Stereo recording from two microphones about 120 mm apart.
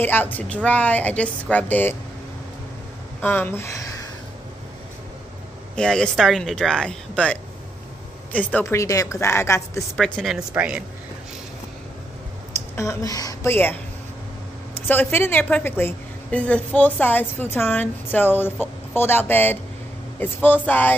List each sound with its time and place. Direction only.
0.0 s a woman's voice: 15° left (ahead or behind)
3.2 s speech: 15° left (ahead or behind)
5.8 s a woman's voice: 5° left (ahead or behind)
8.6 s a woman's voice: 25° left (ahead or behind)
9.9 s speech: 5° left (ahead or behind)
10.5 s speech: 10° right (ahead or behind)
12.7 s speech: 30° left (ahead or behind)
13.5 s a woman's voice: 15° left (ahead or behind)
14.9 s a woman's voice: 15° left (ahead or behind)